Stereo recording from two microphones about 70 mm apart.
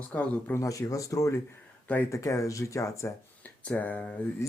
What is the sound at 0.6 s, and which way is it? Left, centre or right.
Speech, left.